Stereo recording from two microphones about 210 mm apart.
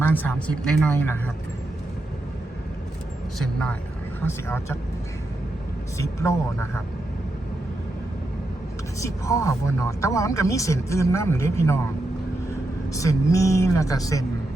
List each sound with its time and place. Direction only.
0.1 s speech: 10° left (ahead or behind)
4.4 s speech: 10° left (ahead or behind)
6.0 s speech: 15° left (ahead or behind)
9.0 s speech: 15° left (ahead or behind)
12.9 s speech: 15° left (ahead or behind)